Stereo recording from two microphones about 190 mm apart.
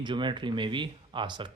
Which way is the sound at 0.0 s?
25° right (ahead or behind).